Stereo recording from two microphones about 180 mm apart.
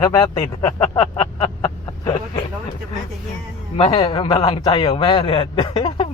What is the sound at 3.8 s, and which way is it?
A man's voice, 30° left (ahead or behind).